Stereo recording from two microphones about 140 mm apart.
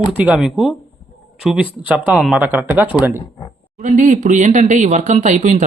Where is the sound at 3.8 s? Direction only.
65° right (ahead or behind).